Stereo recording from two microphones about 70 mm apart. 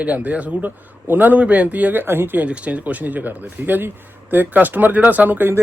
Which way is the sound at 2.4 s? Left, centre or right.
Right.